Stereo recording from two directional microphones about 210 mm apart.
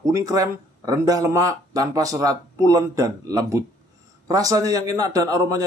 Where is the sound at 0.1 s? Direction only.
15° right (ahead or behind).